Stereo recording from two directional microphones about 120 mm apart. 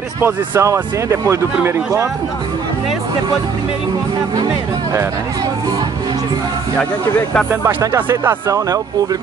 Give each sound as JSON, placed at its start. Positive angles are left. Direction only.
{"t": 0.2, "sound": "speech", "side_deg": -25}
{"t": 6.8, "sound": "speech", "side_deg": 10}
{"t": 7.6, "sound": "speech", "side_deg": -25}